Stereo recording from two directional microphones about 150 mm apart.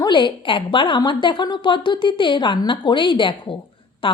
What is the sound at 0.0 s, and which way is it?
A woman's voice, 30° left (ahead or behind).